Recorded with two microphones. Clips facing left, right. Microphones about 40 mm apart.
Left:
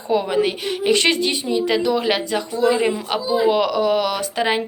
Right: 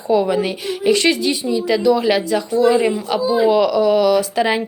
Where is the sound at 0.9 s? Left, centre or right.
Left.